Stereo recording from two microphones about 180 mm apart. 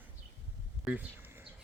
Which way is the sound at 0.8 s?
10° right (ahead or behind).